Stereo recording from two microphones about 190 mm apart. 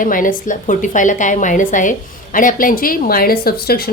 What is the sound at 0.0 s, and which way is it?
A woman's voice, 45° left (ahead or behind).